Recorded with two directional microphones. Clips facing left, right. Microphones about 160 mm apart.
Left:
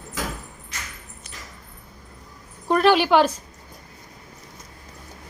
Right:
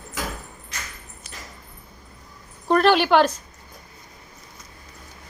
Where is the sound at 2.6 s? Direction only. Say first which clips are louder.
Even; 5° left (ahead or behind).